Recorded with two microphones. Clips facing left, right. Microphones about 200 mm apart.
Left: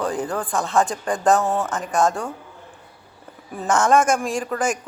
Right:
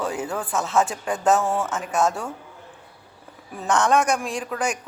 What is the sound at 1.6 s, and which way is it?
Speech, 5° right (ahead or behind).